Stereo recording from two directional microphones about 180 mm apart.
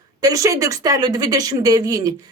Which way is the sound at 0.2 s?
20° right (ahead or behind).